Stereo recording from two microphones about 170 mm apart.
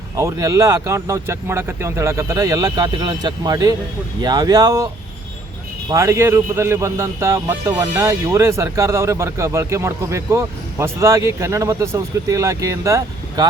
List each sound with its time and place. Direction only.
0.2 s speech: 20° right (ahead or behind)
5.9 s speech: 20° right (ahead or behind)